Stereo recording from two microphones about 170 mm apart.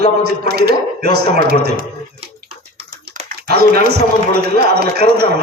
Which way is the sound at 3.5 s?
75° right (ahead or behind).